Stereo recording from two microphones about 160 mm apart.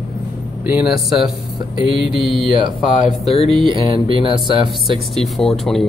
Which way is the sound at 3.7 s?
30° right (ahead or behind).